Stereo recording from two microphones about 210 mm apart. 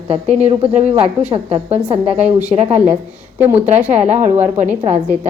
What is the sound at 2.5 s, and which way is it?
Speech, 30° right (ahead or behind).